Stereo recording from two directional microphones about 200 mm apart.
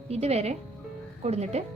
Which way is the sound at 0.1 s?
30° right (ahead or behind).